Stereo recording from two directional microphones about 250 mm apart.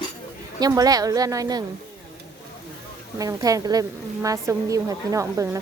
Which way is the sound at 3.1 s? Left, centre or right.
Centre.